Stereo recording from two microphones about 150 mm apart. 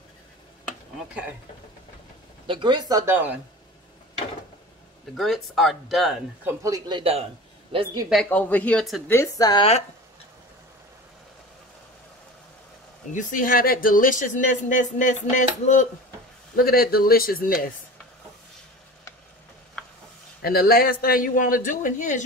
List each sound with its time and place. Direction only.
2.4 s speech: 30° right (ahead or behind)
3.1 s speech: 10° right (ahead or behind)
5.1 s speech: centre (ahead or behind)
6.4 s a man's voice: 20° right (ahead or behind)
7.0 s speech: 40° right (ahead or behind)
7.7 s a man's voice: 30° right (ahead or behind)
8.1 s speech: 5° left (ahead or behind)
9.0 s speech: 20° left (ahead or behind)
13.1 s a woman's voice: 60° left (ahead or behind)
16.5 s speech: 90° left
20.4 s speech: 85° left; by 22.2 s 55° left (ahead or behind)